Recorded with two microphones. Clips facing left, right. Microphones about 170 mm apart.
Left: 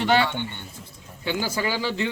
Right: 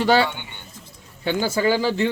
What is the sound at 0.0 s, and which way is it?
Speech, 35° right (ahead or behind).